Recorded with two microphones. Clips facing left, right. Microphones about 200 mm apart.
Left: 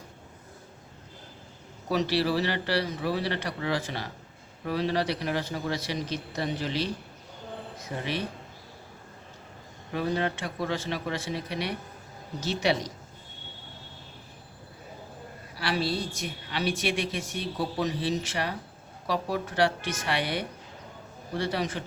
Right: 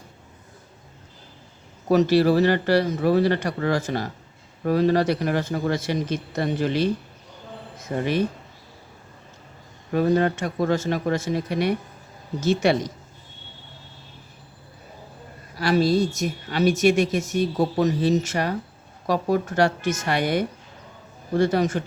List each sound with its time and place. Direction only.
1.9 s a woman's voice: 45° right (ahead or behind)
9.9 s a woman's voice: 45° right (ahead or behind)
15.5 s a woman's voice: 45° right (ahead or behind)